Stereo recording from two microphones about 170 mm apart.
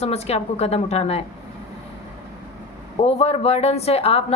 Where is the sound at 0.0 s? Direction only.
40° left (ahead or behind).